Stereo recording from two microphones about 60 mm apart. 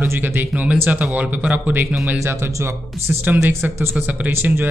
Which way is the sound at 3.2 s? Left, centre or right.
Right.